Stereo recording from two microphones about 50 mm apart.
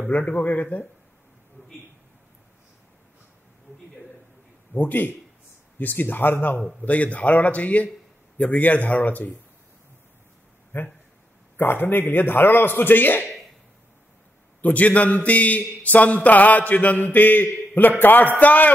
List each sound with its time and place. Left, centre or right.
0.2 s a man's voice: left
4.7 s a man's voice: left
6.8 s a man's voice: left
10.7 s a man's voice: left
14.6 s a man's voice: left